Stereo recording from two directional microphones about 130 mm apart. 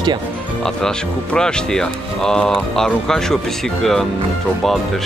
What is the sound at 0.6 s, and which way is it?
Speech, 5° left (ahead or behind).